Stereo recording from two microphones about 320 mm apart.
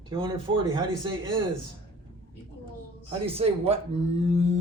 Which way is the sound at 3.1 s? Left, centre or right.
Centre.